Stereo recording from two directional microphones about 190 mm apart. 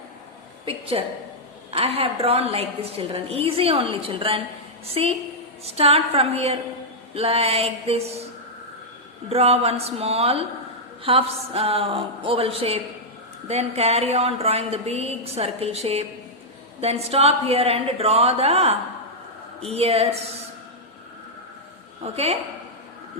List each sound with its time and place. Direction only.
0.6 s a woman's voice: 30° right (ahead or behind)
9.3 s a woman's voice: 30° right (ahead or behind)
22.0 s a woman's voice: 30° right (ahead or behind)